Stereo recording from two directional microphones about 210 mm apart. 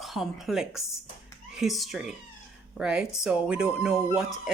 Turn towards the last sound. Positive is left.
turn(degrees=-5)  # may be behind; listen again after turning